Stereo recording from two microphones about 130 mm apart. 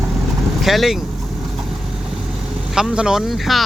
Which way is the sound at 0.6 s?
Centre (ahead or behind).